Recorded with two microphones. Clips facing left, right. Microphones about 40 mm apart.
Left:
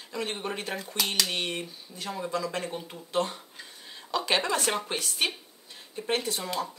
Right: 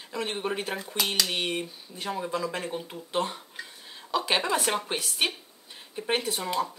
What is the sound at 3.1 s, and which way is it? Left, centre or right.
Speech, centre.